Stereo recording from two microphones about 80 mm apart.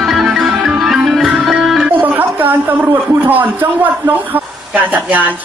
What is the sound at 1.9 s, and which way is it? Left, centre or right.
A man's voice, right.